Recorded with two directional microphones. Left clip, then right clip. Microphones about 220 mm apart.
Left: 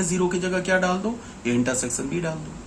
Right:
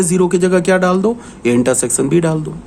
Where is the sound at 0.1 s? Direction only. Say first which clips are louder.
Right 11 dB; 50° right (ahead or behind).